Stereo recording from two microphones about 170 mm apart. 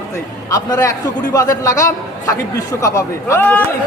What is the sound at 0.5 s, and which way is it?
A man's voice, 20° left (ahead or behind).